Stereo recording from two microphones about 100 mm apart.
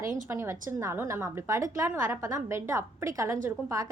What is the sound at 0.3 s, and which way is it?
A woman's voice, 25° right (ahead or behind).